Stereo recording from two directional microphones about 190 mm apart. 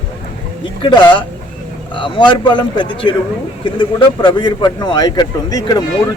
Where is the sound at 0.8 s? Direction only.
25° left (ahead or behind).